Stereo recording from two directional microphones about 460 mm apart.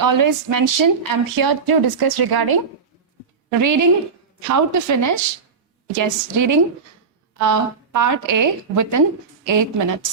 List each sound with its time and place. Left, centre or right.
0.0 s speech: right
3.6 s a woman's voice: right